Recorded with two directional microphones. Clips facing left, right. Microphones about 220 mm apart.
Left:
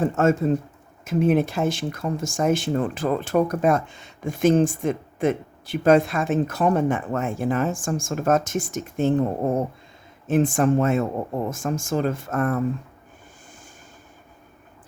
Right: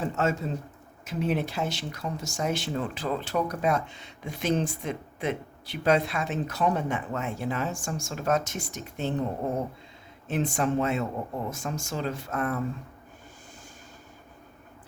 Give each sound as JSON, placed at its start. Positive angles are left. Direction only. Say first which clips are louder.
{"t": 0.0, "sound": "speech", "louder": "left 8 dB", "side_deg": 50}